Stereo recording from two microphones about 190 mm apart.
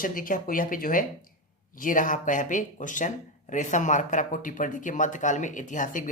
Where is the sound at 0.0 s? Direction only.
45° left (ahead or behind).